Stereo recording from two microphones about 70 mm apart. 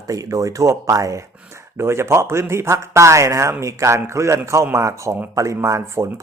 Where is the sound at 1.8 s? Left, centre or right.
Right.